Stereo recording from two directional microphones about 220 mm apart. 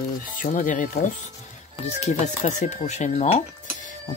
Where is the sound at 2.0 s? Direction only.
30° left (ahead or behind).